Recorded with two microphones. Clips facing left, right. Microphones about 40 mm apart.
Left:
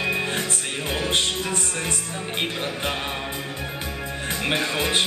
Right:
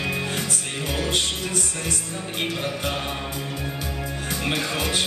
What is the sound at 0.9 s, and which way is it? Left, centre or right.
Music, left.